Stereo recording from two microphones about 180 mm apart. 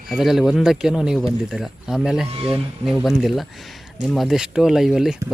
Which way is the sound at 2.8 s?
Centre (ahead or behind).